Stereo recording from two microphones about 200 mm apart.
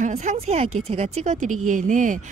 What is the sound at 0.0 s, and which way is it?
Speech, 35° right (ahead or behind).